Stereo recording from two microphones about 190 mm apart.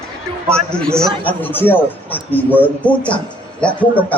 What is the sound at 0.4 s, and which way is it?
A man's voice, 5° left (ahead or behind).